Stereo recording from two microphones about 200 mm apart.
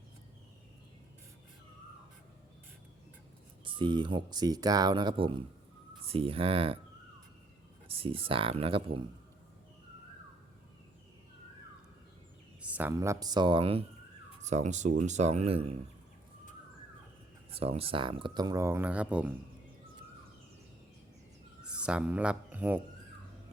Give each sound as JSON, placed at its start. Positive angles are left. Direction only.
{"t": 3.6, "sound": "speech", "side_deg": -25}
{"t": 7.9, "sound": "speech", "side_deg": -25}
{"t": 12.6, "sound": "speech", "side_deg": -10}
{"t": 17.5, "sound": "speech", "side_deg": -30}
{"t": 21.6, "sound": "speech", "side_deg": -5}